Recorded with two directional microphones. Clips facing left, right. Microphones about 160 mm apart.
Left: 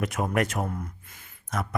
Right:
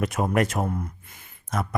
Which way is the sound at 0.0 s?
30° right (ahead or behind).